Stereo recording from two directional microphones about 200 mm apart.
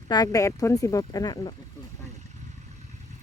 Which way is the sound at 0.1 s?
20° left (ahead or behind).